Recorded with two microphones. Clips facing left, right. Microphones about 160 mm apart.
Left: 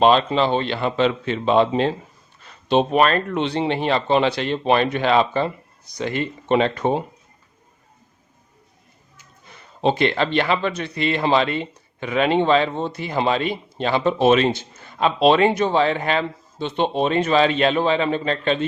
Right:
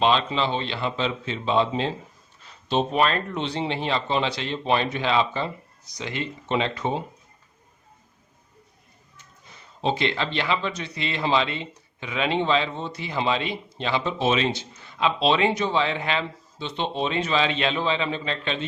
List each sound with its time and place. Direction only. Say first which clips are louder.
0.0 s speech: left 6 dB; 45° left (ahead or behind)
9.5 s speech: left 5 dB; 60° left (ahead or behind)